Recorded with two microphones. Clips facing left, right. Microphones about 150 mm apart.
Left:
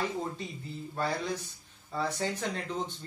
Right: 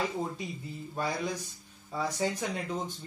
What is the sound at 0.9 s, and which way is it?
Speech, 15° right (ahead or behind).